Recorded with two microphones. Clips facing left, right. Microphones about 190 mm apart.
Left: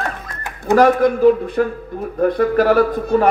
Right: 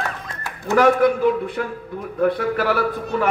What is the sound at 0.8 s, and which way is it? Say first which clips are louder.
A man's voice: left 2 dB; 40° left (ahead or behind).